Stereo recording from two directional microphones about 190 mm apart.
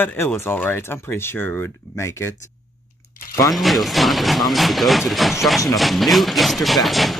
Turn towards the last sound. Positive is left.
turn(degrees=0)  # may be behind; listen again after turning